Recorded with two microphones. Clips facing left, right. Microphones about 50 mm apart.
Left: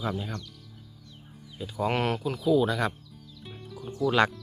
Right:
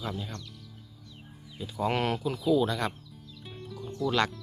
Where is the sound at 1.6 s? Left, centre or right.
Centre.